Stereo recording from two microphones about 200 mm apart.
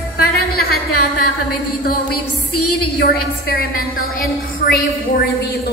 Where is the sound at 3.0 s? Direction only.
50° left (ahead or behind).